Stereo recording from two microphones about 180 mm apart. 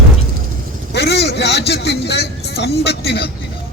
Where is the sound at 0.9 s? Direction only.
65° left (ahead or behind).